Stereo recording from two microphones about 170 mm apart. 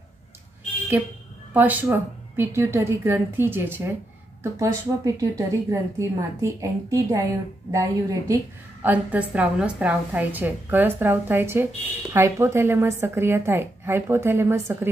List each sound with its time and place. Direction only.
1.0 s a woman's voice: 10° right (ahead or behind)